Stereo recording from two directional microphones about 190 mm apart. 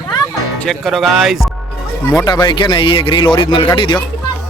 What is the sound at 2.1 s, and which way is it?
A man's voice, 15° left (ahead or behind).